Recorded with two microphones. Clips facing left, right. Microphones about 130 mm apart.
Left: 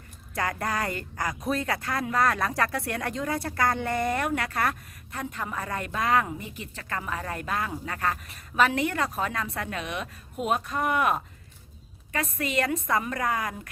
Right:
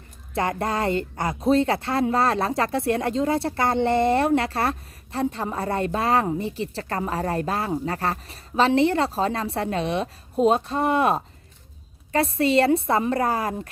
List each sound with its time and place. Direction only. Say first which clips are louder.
0.3 s a woman's voice: right 5 dB; 25° right (ahead or behind)